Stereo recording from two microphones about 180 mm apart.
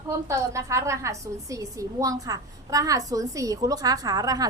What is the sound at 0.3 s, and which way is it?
A woman's voice, 15° right (ahead or behind).